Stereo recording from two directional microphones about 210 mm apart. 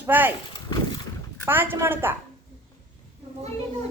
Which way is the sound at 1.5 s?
10° right (ahead or behind).